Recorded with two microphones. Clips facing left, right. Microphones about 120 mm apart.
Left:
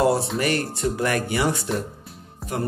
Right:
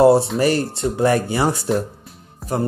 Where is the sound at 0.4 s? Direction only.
30° right (ahead or behind).